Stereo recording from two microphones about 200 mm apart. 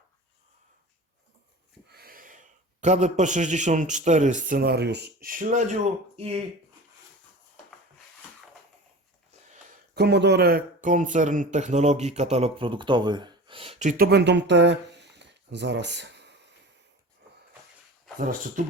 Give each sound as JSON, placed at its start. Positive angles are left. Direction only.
{"t": 1.9, "sound": "a man's voice", "side_deg": -50}
{"t": 9.9, "sound": "speech", "side_deg": -55}
{"t": 18.2, "sound": "speech", "side_deg": -40}